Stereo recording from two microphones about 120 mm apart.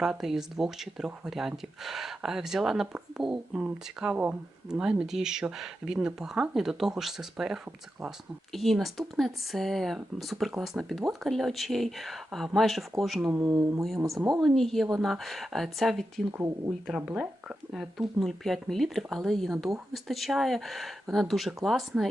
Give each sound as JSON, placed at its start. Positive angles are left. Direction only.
{"t": 0.0, "sound": "speech", "side_deg": -5}
{"t": 13.3, "sound": "speech", "side_deg": -20}
{"t": 14.4, "sound": "speech", "side_deg": 0}
{"t": 16.9, "sound": "speech", "side_deg": -10}